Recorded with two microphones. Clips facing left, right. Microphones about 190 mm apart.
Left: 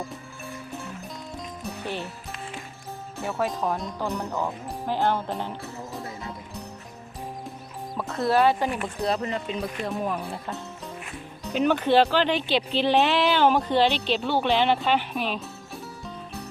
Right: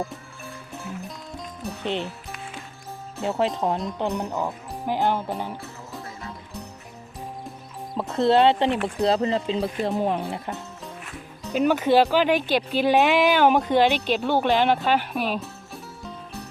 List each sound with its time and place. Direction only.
1.8 s speech: 20° right (ahead or behind)
3.2 s speech: 25° right (ahead or behind)
7.9 s speech: 25° right (ahead or behind)
11.4 s speech: 5° right (ahead or behind)
15.4 s music: centre (ahead or behind)